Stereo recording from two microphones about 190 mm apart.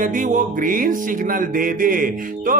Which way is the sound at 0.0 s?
45° right (ahead or behind).